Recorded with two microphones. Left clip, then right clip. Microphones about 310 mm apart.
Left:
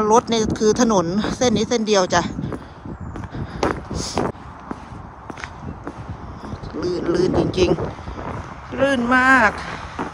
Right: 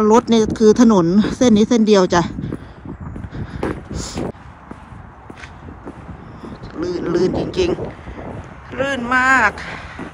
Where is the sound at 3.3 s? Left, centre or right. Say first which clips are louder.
Left 3 dB; centre.